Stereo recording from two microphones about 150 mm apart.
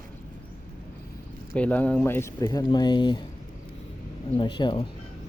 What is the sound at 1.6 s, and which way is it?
Speech, 10° left (ahead or behind).